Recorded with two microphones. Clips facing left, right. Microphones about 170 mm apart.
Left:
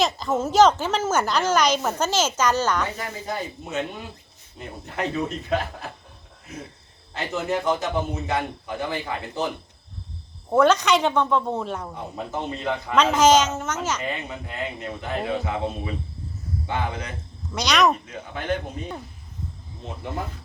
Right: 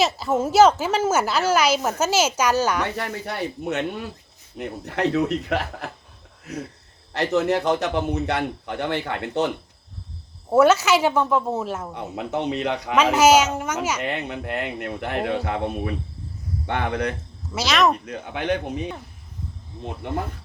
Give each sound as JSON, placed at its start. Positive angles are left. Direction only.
{"t": 0.0, "sound": "a woman's voice", "side_deg": -10}
{"t": 2.9, "sound": "a man's voice", "side_deg": -70}
{"t": 7.1, "sound": "a man's voice", "side_deg": -70}
{"t": 10.5, "sound": "a woman's voice", "side_deg": -5}
{"t": 11.9, "sound": "a man's voice", "side_deg": -75}
{"t": 13.0, "sound": "a woman's voice", "side_deg": -10}
{"t": 14.0, "sound": "a man's voice", "side_deg": -70}
{"t": 16.6, "sound": "speech", "side_deg": -65}
{"t": 17.5, "sound": "speech", "side_deg": -5}
{"t": 18.0, "sound": "a man's voice", "side_deg": -70}